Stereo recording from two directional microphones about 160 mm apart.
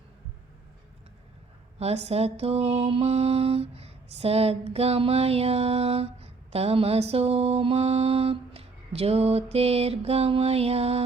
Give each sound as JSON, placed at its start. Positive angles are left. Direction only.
{"t": 1.8, "sound": "lullaby", "side_deg": -40}